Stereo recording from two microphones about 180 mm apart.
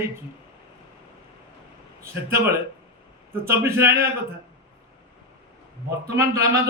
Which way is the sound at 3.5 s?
15° right (ahead or behind).